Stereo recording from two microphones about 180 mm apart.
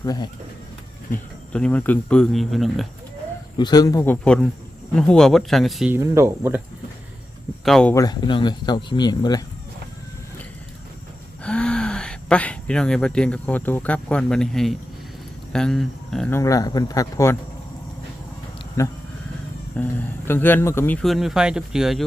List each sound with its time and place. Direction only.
0.0 s speech: 20° left (ahead or behind)
1.1 s speech: 5° left (ahead or behind)
3.6 s speech: 20° left (ahead or behind); by 5.9 s centre (ahead or behind)
5.9 s speech: 15° right (ahead or behind)
7.6 s speech: 5° left (ahead or behind)
7.9 s speech: 20° left (ahead or behind)
11.4 s speech: 5° left (ahead or behind)
16.3 s speech: 20° left (ahead or behind)
18.8 s speech: 15° left (ahead or behind); by 22.0 s centre (ahead or behind)